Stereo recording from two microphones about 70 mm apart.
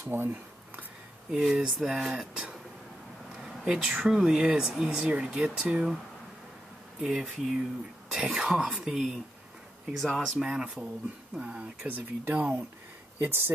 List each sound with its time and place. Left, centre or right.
0.1 s a sound: right
1.3 s speech: centre
7.0 s speech: centre
10.0 s speech: centre
10.3 s speech: centre; by 13.5 s right